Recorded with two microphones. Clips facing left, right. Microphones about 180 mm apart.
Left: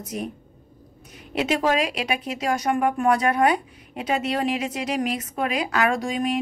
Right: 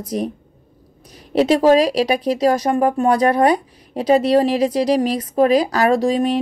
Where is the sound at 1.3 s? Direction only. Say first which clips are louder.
Right 9 dB; 35° right (ahead or behind).